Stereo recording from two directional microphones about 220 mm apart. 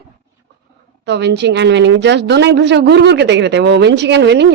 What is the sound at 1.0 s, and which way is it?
A woman's voice, 50° right (ahead or behind).